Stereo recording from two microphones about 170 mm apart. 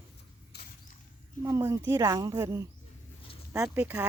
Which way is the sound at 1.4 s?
15° right (ahead or behind).